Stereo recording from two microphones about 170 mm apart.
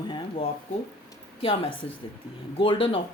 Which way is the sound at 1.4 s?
30° left (ahead or behind).